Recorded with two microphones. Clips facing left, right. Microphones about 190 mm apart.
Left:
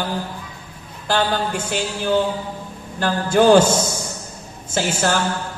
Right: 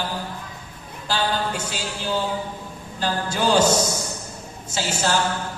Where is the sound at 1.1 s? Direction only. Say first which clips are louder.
Left 4 dB; 55° left (ahead or behind).